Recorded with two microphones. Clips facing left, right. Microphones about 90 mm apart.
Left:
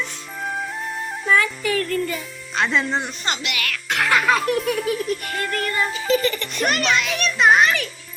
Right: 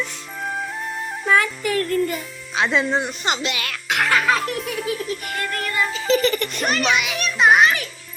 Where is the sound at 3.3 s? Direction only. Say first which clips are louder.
Right 2 dB; 25° right (ahead or behind).